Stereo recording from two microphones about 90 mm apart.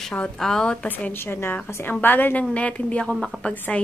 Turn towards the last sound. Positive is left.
turn(degrees=20)  # may be behind; listen again after turning